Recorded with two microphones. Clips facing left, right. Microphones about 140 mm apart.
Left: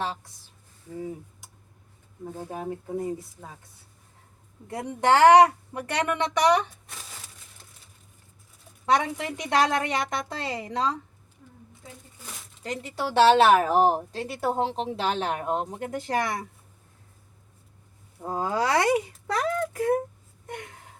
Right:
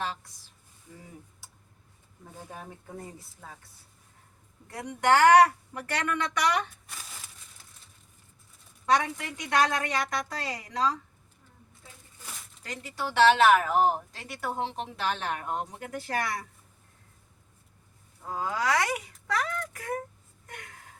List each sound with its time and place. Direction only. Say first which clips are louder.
0.0 s speech: left 3 dB; 25° left (ahead or behind)
2.5 s speech: left 11 dB; 15° left (ahead or behind)
4.7 s speech: left 2 dB; 25° left (ahead or behind)
8.9 s speech: left 2 dB; 20° left (ahead or behind)
12.6 s speech: left 5 dB; 25° left (ahead or behind)
18.2 s speech: left 5 dB; 35° left (ahead or behind)